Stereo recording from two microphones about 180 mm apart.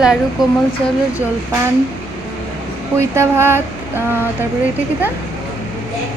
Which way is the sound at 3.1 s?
15° right (ahead or behind).